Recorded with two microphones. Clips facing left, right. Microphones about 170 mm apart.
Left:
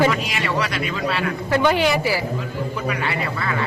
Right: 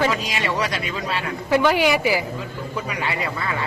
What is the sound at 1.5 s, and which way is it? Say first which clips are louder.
Speech: right 1 dB; 10° right (ahead or behind).